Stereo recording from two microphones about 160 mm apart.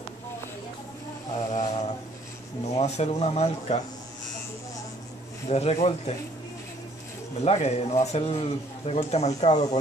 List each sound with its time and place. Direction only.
1.5 s a sound: 45° left (ahead or behind)
2.7 s a man's voice: 45° left (ahead or behind)
5.5 s a man's voice: 40° left (ahead or behind)
7.4 s a man's voice: 45° left (ahead or behind)